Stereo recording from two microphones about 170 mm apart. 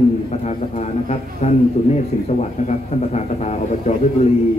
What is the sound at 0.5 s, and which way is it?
Speech, 40° left (ahead or behind).